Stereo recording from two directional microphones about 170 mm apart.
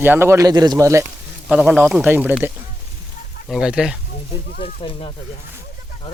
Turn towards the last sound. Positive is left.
turn(degrees=30)  # may be behind; listen again after turning